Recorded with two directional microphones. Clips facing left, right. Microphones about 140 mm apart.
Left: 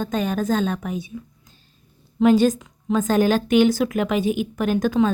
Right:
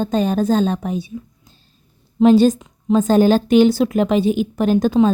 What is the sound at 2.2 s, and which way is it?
A woman's voice, 30° right (ahead or behind).